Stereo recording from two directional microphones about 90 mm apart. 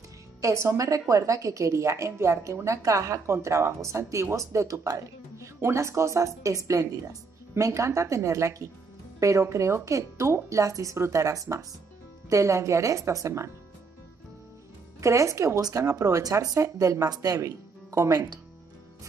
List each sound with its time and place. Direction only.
0.4 s a woman's voice: 30° right (ahead or behind)
15.0 s a woman's voice: 35° right (ahead or behind)